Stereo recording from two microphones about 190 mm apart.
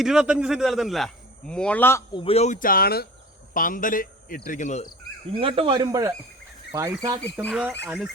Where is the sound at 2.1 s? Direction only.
30° left (ahead or behind).